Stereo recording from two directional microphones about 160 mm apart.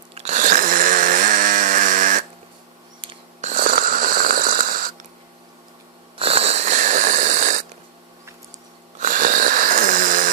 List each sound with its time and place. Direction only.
0.1 s chainsaw: 45° right (ahead or behind)
3.4 s snoring: 55° right (ahead or behind)
6.1 s wheeze: 35° right (ahead or behind)
9.0 s wheeze: 55° right (ahead or behind)